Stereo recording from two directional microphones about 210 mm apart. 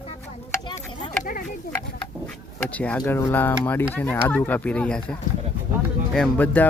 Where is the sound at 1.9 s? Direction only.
5° left (ahead or behind).